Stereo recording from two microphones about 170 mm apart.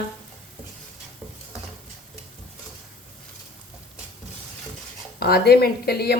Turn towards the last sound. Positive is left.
turn(degrees=65)  # may be behind; listen again after turning